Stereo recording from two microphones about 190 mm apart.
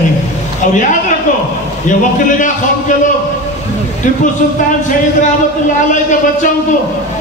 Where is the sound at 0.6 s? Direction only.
40° left (ahead or behind).